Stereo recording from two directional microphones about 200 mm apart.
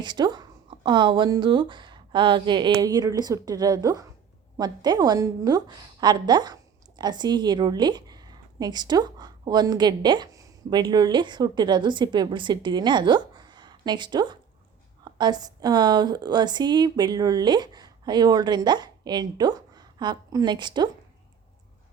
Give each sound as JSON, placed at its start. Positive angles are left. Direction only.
{"t": 0.0, "sound": "a woman's voice", "side_deg": -20}